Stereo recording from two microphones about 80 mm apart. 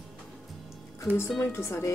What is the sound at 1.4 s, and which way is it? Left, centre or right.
Speech, left.